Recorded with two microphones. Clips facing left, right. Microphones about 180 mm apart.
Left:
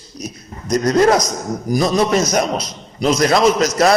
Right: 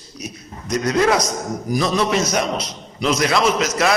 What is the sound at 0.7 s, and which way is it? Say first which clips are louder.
A man's voice: left 4 dB; 40° left (ahead or behind).